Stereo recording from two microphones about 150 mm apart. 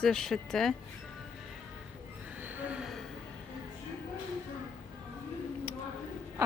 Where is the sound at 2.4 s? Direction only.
10° right (ahead or behind).